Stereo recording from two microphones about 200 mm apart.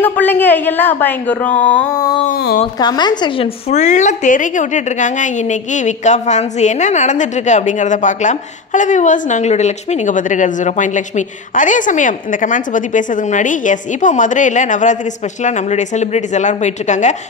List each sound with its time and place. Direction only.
0.0 s a woman's voice: 10° left (ahead or behind)
2.2 s a woman's voice: 40° left (ahead or behind)
2.8 s a woman's voice: 20° left (ahead or behind)
3.7 s a woman's voice: 35° left (ahead or behind)